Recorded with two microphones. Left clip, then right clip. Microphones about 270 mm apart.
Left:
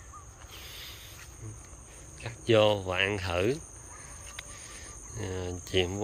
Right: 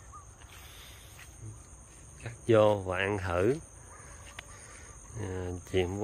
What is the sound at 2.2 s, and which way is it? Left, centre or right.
Speech, centre.